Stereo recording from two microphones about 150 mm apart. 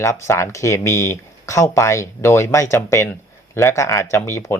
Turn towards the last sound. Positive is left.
turn(degrees=15)  # may be behind; listen again after turning